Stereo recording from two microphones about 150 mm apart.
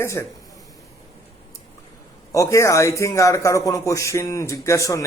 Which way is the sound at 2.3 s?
20° left (ahead or behind).